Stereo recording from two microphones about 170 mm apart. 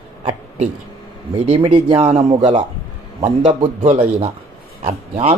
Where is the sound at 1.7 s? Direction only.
30° right (ahead or behind).